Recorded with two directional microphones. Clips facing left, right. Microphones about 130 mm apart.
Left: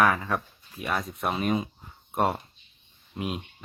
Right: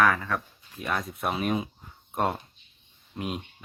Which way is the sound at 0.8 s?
Centre (ahead or behind).